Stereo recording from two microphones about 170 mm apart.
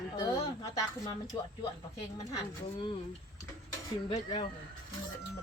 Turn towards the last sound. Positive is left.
turn(degrees=25)  # may be behind; listen again after turning